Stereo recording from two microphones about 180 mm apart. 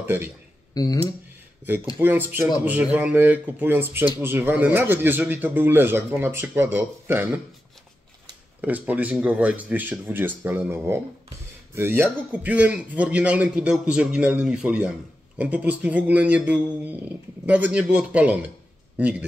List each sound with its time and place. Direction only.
0.0 s a man's voice: 10° right (ahead or behind)
0.8 s speech: 20° left (ahead or behind)
2.0 s a man's voice: 10° right (ahead or behind)
8.5 s a man's voice: 10° right (ahead or behind)